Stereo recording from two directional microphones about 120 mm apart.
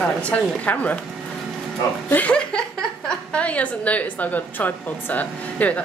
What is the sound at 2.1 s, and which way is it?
A woman's voice, 10° left (ahead or behind).